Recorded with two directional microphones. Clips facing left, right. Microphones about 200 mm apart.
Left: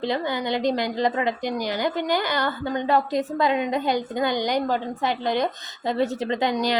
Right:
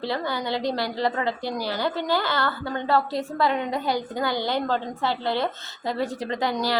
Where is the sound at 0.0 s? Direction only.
20° left (ahead or behind).